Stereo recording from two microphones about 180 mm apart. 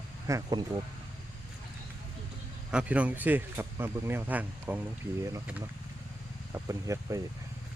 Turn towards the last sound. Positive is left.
turn(degrees=-15)  # may be behind; listen again after turning